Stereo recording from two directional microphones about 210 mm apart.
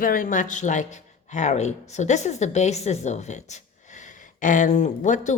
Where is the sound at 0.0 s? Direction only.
40° left (ahead or behind).